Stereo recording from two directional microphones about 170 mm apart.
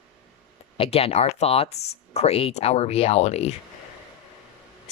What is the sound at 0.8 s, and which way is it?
Speech, 35° left (ahead or behind).